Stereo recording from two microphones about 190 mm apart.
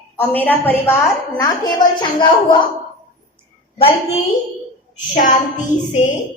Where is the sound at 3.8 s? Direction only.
30° left (ahead or behind).